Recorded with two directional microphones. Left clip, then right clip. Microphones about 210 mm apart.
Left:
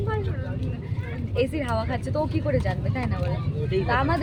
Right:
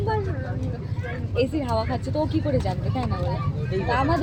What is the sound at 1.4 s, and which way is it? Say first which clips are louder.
Speech: right 1 dB; 5° right (ahead or behind).